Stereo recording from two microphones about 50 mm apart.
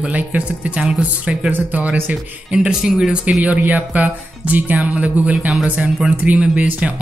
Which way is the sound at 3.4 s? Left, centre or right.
Right.